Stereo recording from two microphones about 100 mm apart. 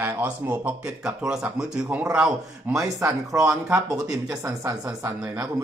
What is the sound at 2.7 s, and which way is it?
Speech, 30° right (ahead or behind).